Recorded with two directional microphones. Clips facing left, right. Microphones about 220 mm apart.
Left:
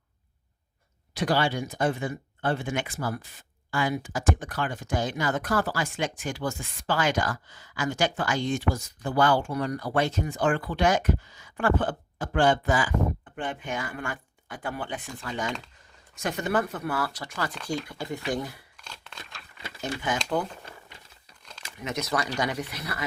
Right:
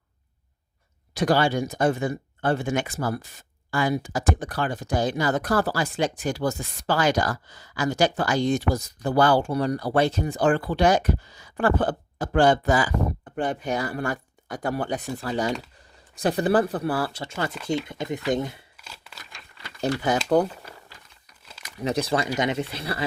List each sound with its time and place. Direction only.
1.1 s speech: 45° right (ahead or behind); by 18.6 s 20° right (ahead or behind)
18.8 s scissors: 5° right (ahead or behind)
20.3 s speech: 40° right (ahead or behind)
21.8 s speech: 35° right (ahead or behind)